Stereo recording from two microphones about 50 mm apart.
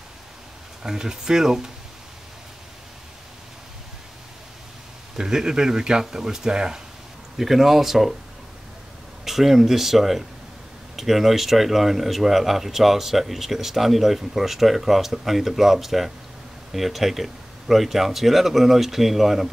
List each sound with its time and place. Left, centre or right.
0.8 s speech: centre
5.1 s speech: centre
9.2 s speech: centre